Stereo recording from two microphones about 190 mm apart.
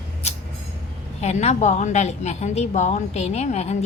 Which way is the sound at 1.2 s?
35° left (ahead or behind).